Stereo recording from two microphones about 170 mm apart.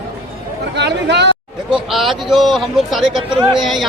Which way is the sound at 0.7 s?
90° right.